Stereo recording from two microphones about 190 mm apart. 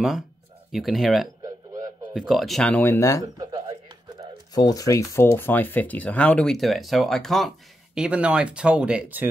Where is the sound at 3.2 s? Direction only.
20° right (ahead or behind).